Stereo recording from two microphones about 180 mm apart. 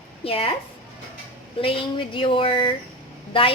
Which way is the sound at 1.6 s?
30° left (ahead or behind).